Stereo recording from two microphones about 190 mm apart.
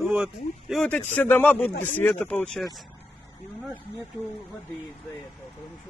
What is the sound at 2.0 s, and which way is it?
Speech, 10° left (ahead or behind).